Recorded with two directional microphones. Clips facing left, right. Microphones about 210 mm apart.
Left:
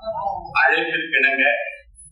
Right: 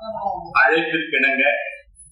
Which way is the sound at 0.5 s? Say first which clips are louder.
Right 5 dB; 55° right (ahead or behind).